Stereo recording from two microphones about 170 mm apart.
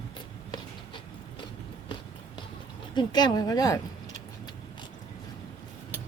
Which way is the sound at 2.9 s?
25° left (ahead or behind).